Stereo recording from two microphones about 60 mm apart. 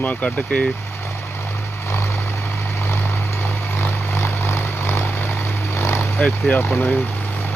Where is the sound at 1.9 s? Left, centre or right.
Left.